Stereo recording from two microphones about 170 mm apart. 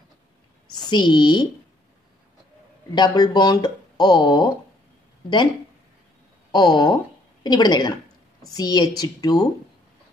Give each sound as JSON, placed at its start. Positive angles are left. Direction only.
{"t": 0.7, "sound": "speech", "side_deg": 25}
{"t": 2.9, "sound": "speech", "side_deg": 25}
{"t": 6.5, "sound": "speech", "side_deg": 25}